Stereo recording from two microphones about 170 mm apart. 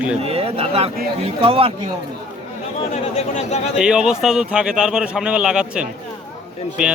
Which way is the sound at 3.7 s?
5° right (ahead or behind).